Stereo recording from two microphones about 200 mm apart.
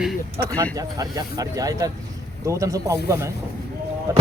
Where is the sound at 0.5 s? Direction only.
15° right (ahead or behind).